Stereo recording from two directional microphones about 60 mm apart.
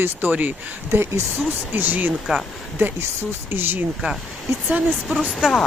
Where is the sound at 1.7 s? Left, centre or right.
Right.